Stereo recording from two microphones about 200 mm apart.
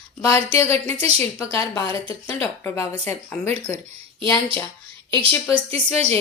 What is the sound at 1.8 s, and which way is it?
A woman's voice, 20° left (ahead or behind).